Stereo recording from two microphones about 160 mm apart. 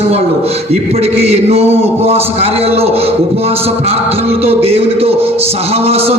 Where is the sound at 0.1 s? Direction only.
40° right (ahead or behind).